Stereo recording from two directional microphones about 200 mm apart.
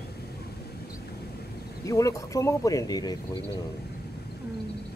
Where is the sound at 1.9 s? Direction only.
15° left (ahead or behind).